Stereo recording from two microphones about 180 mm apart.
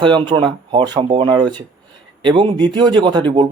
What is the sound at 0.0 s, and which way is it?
Speech, 25° right (ahead or behind).